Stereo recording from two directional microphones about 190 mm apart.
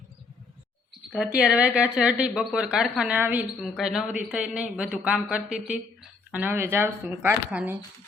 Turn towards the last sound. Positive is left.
turn(degrees=-10)  # may be behind; listen again after turning